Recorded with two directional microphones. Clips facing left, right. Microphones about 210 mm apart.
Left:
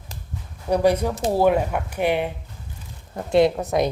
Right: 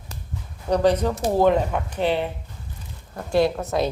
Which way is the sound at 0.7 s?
10° left (ahead or behind).